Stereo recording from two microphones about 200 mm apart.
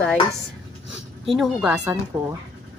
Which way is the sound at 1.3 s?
Centre (ahead or behind).